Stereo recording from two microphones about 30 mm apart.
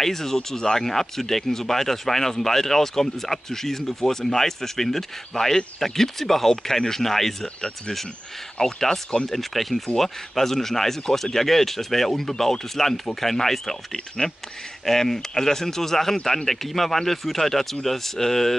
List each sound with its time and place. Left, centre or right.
0.0 s speech: centre
8.5 s speech: centre
9.3 s speech: centre
14.9 s speech: centre